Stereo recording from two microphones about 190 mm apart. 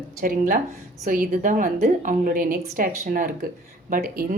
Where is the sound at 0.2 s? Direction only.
45° right (ahead or behind).